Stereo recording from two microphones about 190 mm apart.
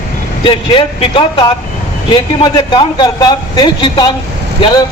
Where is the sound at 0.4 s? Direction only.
25° left (ahead or behind).